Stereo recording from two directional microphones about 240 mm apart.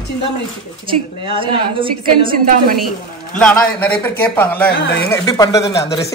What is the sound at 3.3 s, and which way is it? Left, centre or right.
A man's voice, centre.